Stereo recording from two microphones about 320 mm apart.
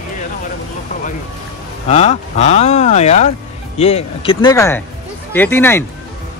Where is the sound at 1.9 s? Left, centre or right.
Left.